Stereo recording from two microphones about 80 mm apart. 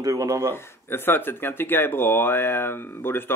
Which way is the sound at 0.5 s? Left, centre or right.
Left.